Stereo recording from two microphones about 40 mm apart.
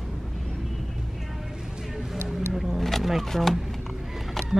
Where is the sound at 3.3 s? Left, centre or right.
Centre.